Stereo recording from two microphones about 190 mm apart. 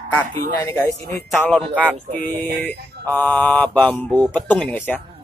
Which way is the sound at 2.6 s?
10° left (ahead or behind).